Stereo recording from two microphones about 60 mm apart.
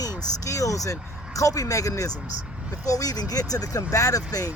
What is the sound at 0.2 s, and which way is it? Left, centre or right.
Speech, left.